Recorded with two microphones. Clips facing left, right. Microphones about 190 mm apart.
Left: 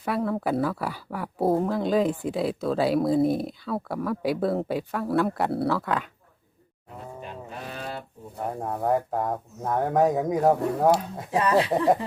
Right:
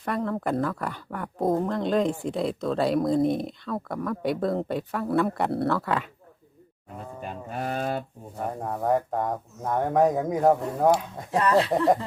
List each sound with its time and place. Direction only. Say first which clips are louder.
0.0 s speech: left 1 dB; 5° left (ahead or behind)
7.6 s a sound: right 8 dB; 50° right (ahead or behind)
8.6 s speech: even; 5° left (ahead or behind)
11.3 s speech: even; 15° left (ahead or behind)